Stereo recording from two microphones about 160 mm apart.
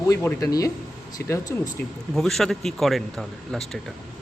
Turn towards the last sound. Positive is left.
turn(degrees=0)  # may be behind; listen again after turning